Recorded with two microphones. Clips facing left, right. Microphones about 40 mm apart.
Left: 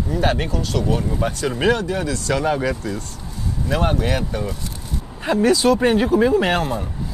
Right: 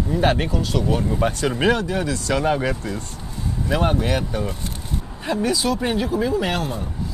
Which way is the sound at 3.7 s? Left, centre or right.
Centre.